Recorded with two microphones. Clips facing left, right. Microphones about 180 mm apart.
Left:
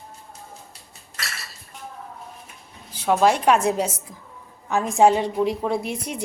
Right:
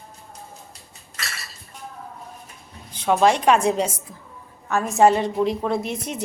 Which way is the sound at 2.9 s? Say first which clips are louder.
Right 1 dB; 5° left (ahead or behind).